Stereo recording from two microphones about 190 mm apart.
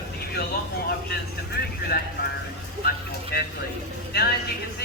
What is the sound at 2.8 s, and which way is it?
Speech, 55° left (ahead or behind).